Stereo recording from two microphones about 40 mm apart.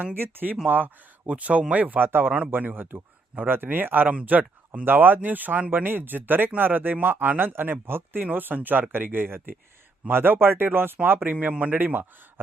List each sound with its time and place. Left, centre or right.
0.1 s a man's voice: right
1.3 s speech: right
2.0 s a man's voice: right
4.9 s a man's voice: right
8.2 s a man's voice: right